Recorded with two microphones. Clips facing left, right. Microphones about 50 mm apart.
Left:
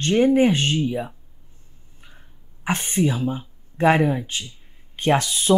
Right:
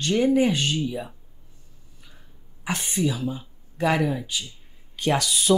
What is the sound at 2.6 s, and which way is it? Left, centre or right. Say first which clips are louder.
Speech: left 4 dB; left.